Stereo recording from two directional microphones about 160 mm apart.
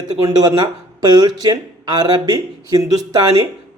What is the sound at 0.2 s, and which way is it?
A man's voice, 25° right (ahead or behind).